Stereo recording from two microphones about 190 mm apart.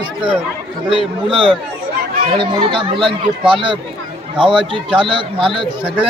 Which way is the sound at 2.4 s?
25° right (ahead or behind).